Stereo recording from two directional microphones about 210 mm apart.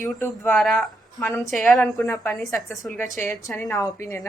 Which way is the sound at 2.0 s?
10° left (ahead or behind).